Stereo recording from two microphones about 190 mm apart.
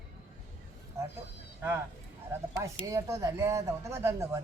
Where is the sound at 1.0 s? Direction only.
15° right (ahead or behind).